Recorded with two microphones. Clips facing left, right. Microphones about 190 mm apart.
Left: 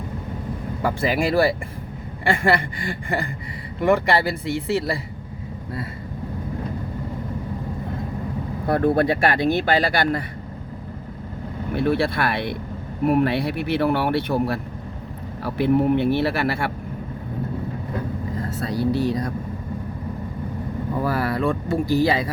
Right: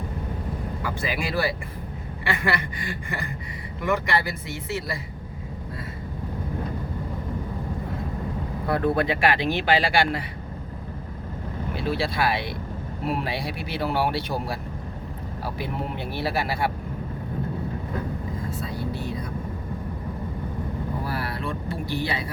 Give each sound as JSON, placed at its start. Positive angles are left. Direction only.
{"t": 0.8, "sound": "speech", "side_deg": 50}
{"t": 3.8, "sound": "speech", "side_deg": 30}
{"t": 8.6, "sound": "speech", "side_deg": 45}
{"t": 11.7, "sound": "speech", "side_deg": 55}
{"t": 18.3, "sound": "vehicle", "side_deg": 75}
{"t": 18.9, "sound": "speech", "side_deg": 75}
{"t": 21.4, "sound": "speech", "side_deg": 45}
{"t": 22.0, "sound": "speech", "side_deg": 90}